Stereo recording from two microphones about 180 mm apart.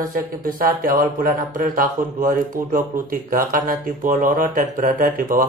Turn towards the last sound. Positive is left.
turn(degrees=-50)  # may be behind; listen again after turning